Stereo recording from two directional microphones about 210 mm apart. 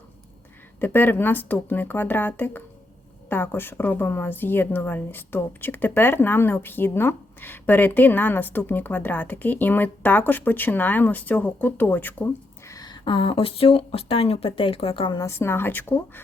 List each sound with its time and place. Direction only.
0.8 s a woman's voice: 10° left (ahead or behind)